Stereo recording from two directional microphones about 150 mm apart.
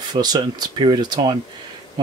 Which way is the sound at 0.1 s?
25° right (ahead or behind).